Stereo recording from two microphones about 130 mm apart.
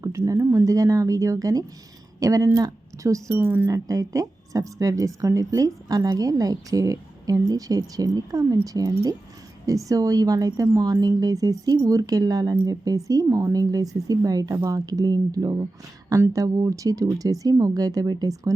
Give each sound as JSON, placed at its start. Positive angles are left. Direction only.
{"t": 0.3, "sound": "speech", "side_deg": -25}